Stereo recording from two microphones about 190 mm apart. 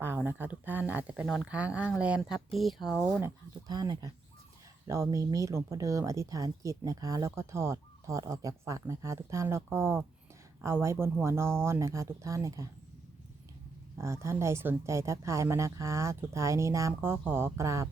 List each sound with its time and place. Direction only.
0.0 s speech: 10° right (ahead or behind)
14.0 s speech: 15° right (ahead or behind)